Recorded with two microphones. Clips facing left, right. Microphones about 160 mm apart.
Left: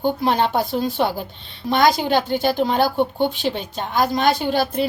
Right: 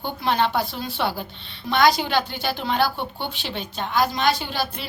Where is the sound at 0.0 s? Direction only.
40° left (ahead or behind).